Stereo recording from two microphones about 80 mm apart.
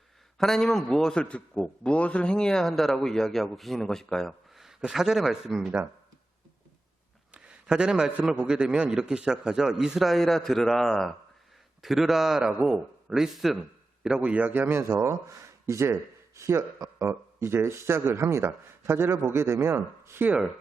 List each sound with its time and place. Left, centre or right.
0.3 s a man's voice: centre
7.3 s a man's voice: centre
14.0 s a man's voice: centre; by 16.6 s right
16.7 s speech: right
17.1 s speech: right